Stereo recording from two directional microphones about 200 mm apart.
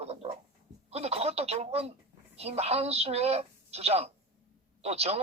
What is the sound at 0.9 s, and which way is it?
Speech, 30° right (ahead or behind).